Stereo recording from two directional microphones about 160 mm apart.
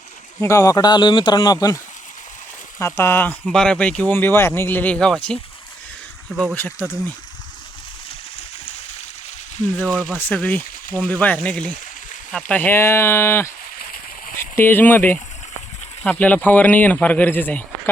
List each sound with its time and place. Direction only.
0.4 s speech: 20° left (ahead or behind); by 6.6 s centre (ahead or behind)
6.6 s speech: 10° left (ahead or behind)
9.7 s speech: 10° left (ahead or behind)
13.7 s a sound: 65° left (ahead or behind)
14.5 s speech: 15° left (ahead or behind)